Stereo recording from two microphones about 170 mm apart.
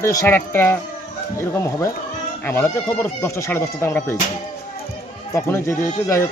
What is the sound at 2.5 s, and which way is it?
A man's voice, 15° left (ahead or behind).